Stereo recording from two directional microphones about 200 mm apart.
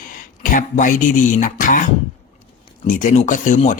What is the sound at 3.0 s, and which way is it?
Speech, 40° left (ahead or behind).